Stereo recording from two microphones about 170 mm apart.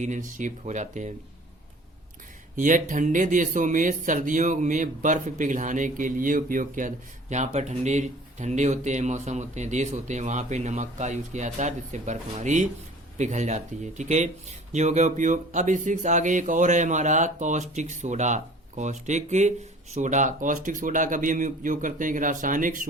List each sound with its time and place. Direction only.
0.0 s speech: 45° right (ahead or behind)
2.6 s speech: 50° right (ahead or behind)